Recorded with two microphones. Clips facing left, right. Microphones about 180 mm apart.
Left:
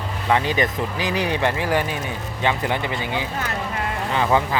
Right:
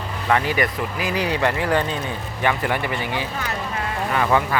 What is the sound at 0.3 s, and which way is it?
Speech, 20° left (ahead or behind).